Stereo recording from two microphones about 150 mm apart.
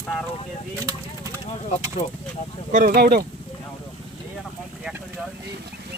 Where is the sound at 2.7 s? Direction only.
60° right (ahead or behind); by 3.3 s 90° right.